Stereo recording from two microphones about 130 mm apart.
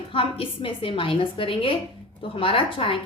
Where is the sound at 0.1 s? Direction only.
45° left (ahead or behind).